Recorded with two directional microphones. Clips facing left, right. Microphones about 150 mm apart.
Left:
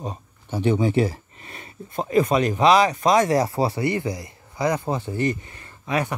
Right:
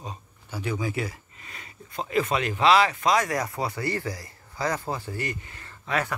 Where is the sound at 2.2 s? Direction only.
15° left (ahead or behind).